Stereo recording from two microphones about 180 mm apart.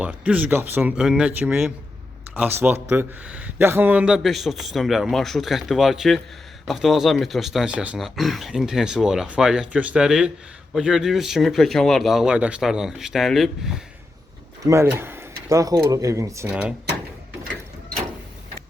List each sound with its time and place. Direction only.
0.0 s speech: 5° right (ahead or behind)
14.6 s speech: 15° right (ahead or behind)